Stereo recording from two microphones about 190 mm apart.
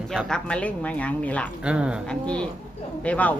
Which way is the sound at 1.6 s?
5° right (ahead or behind).